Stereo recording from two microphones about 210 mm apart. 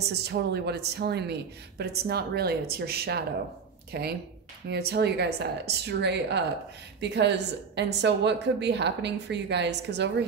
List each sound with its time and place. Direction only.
0.1 s a woman's voice: 50° right (ahead or behind)